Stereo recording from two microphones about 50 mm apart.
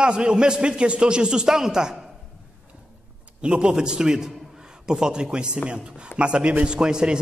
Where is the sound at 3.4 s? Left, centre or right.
Centre.